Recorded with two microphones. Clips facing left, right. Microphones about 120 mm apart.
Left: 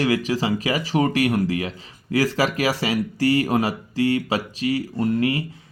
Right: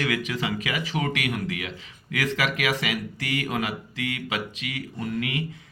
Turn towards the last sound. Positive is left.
turn(degrees=35)  # may be behind; listen again after turning